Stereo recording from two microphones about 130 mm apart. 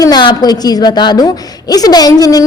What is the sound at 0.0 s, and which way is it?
A woman's voice, 35° left (ahead or behind).